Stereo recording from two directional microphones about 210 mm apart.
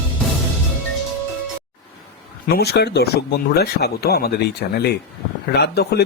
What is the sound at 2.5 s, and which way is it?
Speech, 50° left (ahead or behind).